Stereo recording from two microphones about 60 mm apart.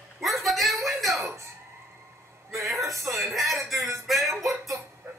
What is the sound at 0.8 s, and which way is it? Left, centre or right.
Music, centre.